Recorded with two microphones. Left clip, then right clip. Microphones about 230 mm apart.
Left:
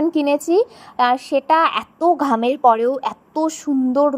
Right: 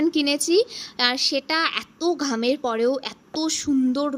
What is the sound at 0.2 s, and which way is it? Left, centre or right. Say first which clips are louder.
A woman's voice: left 5 dB; centre.